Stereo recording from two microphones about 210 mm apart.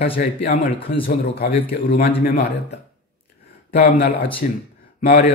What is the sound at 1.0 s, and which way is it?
A man's voice, 45° left (ahead or behind).